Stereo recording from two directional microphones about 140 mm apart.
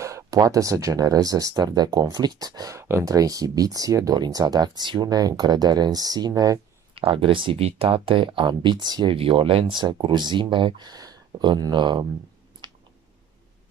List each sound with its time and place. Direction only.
0.0 s speech: 25° right (ahead or behind)
7.0 s speech: 40° right (ahead or behind)
12.6 s a sound: 30° right (ahead or behind)